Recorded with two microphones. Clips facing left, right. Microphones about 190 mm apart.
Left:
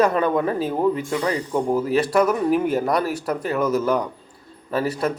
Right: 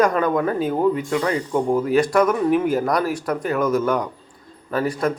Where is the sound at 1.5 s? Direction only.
5° left (ahead or behind).